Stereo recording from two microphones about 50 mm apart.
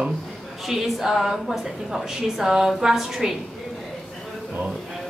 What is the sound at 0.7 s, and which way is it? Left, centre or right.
A woman's voice, centre.